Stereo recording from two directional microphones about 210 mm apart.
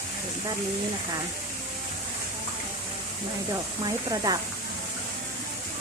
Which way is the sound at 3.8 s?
20° right (ahead or behind).